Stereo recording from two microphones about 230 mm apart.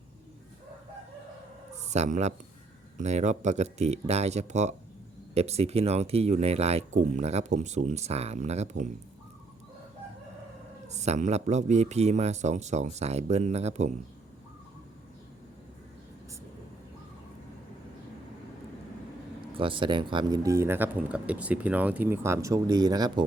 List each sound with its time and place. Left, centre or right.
1.7 s a sound: right
3.0 s speech: right
10.8 s speech: right
19.5 s speech: right